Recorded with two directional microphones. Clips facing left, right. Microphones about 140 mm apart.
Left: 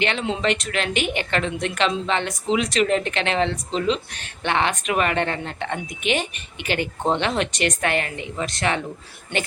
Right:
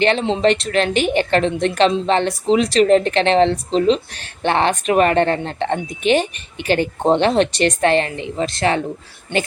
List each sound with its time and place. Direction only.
0.0 s speech: 35° right (ahead or behind)